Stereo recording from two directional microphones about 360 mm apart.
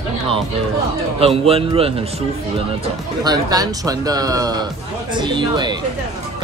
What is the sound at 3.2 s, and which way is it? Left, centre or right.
Speech, centre.